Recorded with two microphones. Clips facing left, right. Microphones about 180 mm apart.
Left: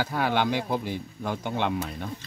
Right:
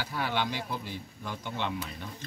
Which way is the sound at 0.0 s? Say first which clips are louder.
Left 6 dB; 50° left (ahead or behind).